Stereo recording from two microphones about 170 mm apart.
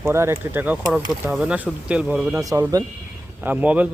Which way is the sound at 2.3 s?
20° right (ahead or behind).